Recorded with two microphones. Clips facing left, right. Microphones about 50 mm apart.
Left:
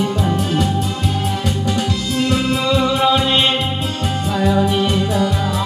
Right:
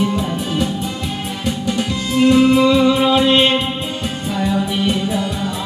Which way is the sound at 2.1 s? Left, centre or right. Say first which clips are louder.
Right 8 dB; centre.